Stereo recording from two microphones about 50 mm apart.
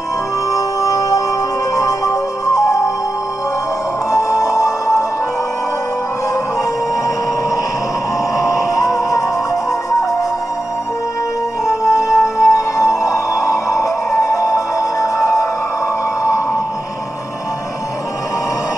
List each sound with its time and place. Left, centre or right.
1.8 s music: left
4.1 s music: left
8.4 s music: left
11.6 s music: left